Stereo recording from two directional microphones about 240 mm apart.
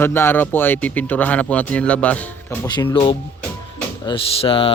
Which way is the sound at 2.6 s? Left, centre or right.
Centre.